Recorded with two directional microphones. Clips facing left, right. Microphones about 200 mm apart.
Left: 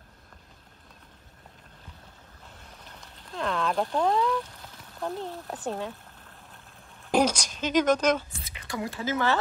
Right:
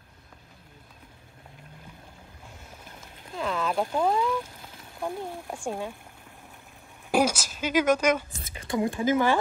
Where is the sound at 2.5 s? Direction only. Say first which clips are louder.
Right 2 dB; 10° right (ahead or behind).